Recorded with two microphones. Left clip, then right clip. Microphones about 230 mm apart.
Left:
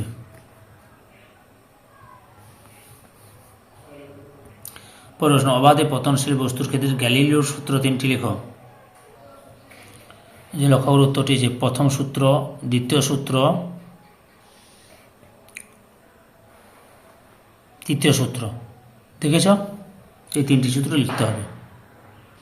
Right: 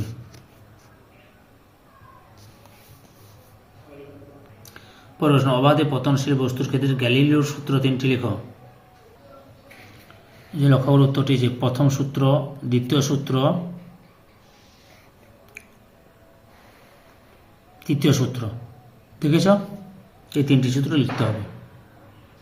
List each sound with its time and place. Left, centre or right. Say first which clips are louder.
4.6 s a man's voice: left 3 dB; centre
10.5 s a man's voice: left 2 dB; centre
17.7 s a man's voice: left 2 dB; centre